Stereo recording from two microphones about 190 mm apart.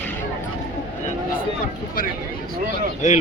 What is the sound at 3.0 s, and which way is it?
Speech, 40° left (ahead or behind).